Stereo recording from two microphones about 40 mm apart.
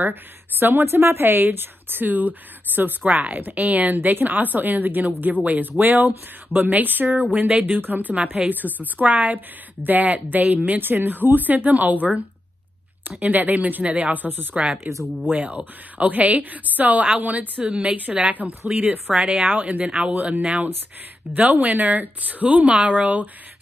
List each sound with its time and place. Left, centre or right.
0.0 s a woman's voice: right
2.0 s a woman's voice: right
10.8 s a woman's voice: right
13.2 s a woman's voice: right
14.5 s a woman's voice: right
18.7 s speech: centre
19.4 s a woman's voice: right
19.9 s speech: right
21.4 s a woman's voice: right